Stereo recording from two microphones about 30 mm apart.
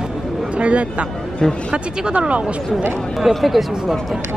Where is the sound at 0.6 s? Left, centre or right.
Right.